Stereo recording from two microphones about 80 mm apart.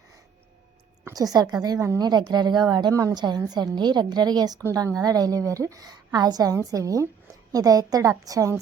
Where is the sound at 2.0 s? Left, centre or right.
Right.